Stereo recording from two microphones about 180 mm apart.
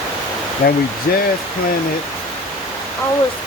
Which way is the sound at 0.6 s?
70° left (ahead or behind).